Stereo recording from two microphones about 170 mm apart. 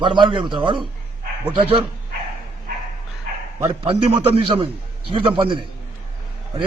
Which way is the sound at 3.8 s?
35° right (ahead or behind).